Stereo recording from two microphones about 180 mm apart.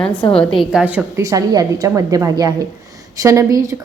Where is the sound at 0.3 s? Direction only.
Centre (ahead or behind).